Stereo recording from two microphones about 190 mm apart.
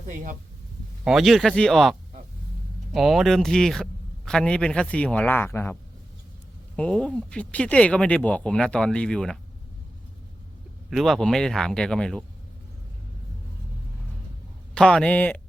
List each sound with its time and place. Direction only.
1.0 s a man's voice: centre (ahead or behind)
6.7 s speech: 5° left (ahead or behind)
10.8 s speech: centre (ahead or behind)
14.8 s a man's voice: 5° left (ahead or behind)